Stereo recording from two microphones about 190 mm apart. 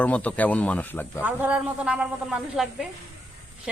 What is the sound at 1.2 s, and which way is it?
Speech, 10° right (ahead or behind).